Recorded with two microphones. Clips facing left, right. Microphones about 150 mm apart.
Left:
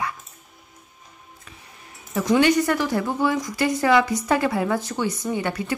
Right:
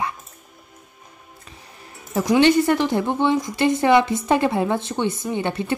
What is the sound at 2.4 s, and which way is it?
Speech, 25° right (ahead or behind).